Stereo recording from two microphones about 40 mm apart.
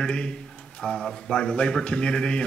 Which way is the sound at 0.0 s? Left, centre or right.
Left.